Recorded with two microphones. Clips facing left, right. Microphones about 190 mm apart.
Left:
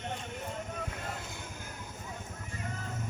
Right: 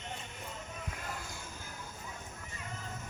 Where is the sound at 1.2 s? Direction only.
20° left (ahead or behind).